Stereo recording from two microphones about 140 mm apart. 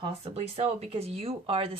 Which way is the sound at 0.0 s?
50° right (ahead or behind).